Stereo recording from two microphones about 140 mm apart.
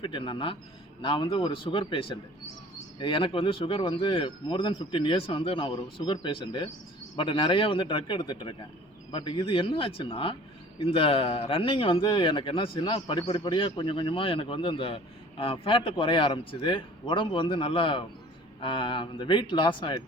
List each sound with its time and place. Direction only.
0.0 s speech: 35° left (ahead or behind)